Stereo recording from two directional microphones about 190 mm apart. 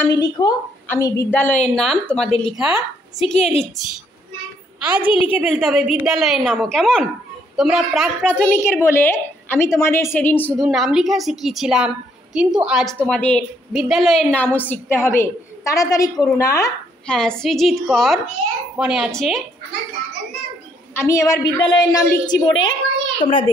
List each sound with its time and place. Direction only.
0.0 s a woman's voice: 20° left (ahead or behind); by 3.3 s centre (ahead or behind)
4.8 s a woman's voice: 5° right (ahead or behind)
8.5 s a woman's voice: 15° left (ahead or behind)
10.6 s a woman's voice: centre (ahead or behind); by 16.7 s 15° left (ahead or behind)
17.1 s a woman's voice: 5° left (ahead or behind)
20.9 s a woman's voice: 15° left (ahead or behind)